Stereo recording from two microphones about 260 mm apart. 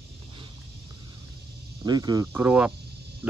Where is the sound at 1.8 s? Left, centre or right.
Centre.